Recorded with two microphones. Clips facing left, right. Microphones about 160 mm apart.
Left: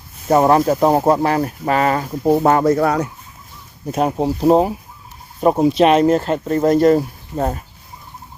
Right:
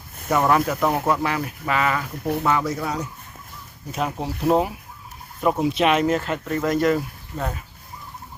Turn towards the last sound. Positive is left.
turn(degrees=40)  # may be behind; listen again after turning